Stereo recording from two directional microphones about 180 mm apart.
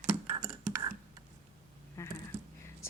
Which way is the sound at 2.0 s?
15° left (ahead or behind).